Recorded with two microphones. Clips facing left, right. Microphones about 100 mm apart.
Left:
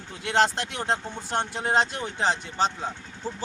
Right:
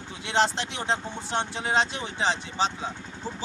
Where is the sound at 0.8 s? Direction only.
45° left (ahead or behind).